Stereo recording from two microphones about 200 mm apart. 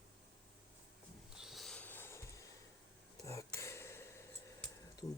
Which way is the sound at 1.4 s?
Centre (ahead or behind).